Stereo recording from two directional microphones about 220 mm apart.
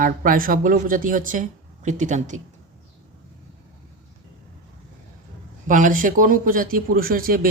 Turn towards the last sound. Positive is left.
turn(degrees=-40)  # may be behind; listen again after turning